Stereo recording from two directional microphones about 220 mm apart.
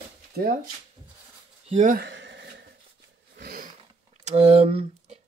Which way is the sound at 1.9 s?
55° right (ahead or behind).